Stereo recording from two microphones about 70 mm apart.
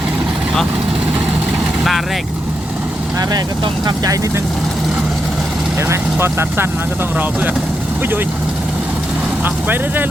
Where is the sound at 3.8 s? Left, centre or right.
Right.